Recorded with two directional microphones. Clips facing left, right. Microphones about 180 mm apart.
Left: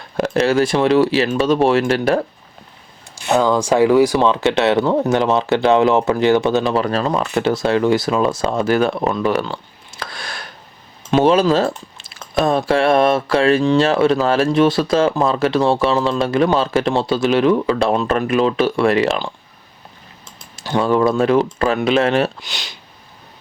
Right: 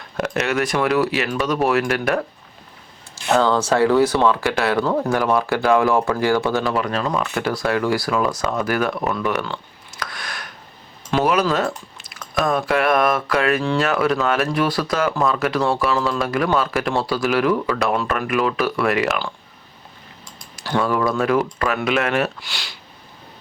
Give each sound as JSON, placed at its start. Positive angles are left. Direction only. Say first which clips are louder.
{"t": 0.2, "sound": "speech", "louder": "left 6 dB", "side_deg": 30}
{"t": 3.3, "sound": "speech", "louder": "left 3 dB", "side_deg": 15}
{"t": 6.8, "sound": "speech", "louder": "left 4 dB", "side_deg": 30}
{"t": 20.6, "sound": "speech", "louder": "left 4 dB", "side_deg": 25}